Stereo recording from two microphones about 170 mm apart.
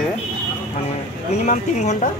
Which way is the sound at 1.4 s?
45° left (ahead or behind).